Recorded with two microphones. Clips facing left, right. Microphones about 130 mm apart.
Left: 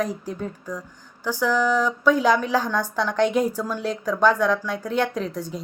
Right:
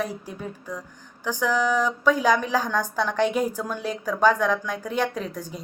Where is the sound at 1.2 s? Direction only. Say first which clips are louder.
Left 2 dB; 15° right (ahead or behind).